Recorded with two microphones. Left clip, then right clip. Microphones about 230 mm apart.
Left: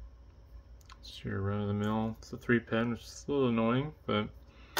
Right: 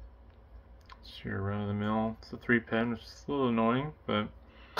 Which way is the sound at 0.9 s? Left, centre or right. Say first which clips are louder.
Right 1 dB; centre.